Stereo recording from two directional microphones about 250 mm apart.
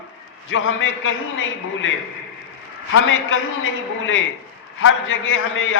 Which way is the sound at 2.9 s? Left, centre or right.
Left.